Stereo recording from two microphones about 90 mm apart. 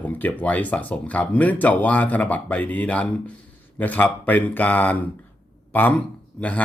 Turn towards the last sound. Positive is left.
turn(degrees=15)  # may be behind; listen again after turning